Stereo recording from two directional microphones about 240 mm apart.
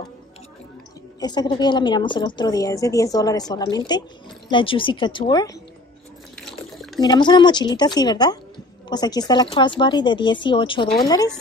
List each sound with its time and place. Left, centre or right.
1.2 s a woman's voice: centre
6.3 s water: centre
7.0 s a woman's voice: centre